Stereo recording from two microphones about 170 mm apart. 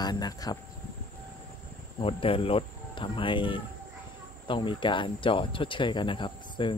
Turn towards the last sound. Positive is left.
turn(degrees=30)  # may be behind; listen again after turning